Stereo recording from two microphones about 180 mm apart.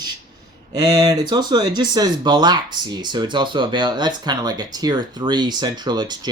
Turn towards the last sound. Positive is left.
turn(degrees=-25)  # may be behind; listen again after turning